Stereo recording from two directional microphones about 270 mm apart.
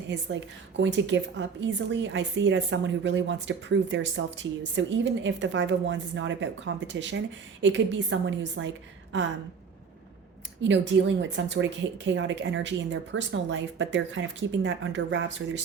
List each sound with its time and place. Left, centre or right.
0.1 s a woman's voice: right
10.6 s a woman's voice: right